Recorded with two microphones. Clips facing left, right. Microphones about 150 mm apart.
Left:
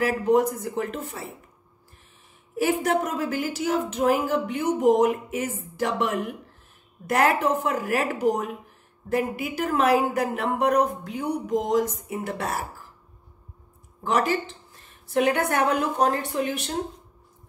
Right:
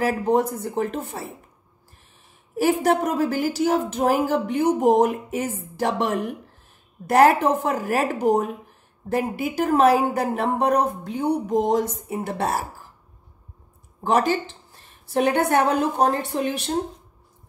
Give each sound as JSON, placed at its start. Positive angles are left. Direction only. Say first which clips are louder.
{"t": 0.0, "sound": "a woman's voice", "louder": "even", "side_deg": -30}
{"t": 2.5, "sound": "a woman's voice", "louder": "right 3 dB", "side_deg": -35}
{"t": 14.0, "sound": "a woman's voice", "louder": "right 3 dB", "side_deg": -30}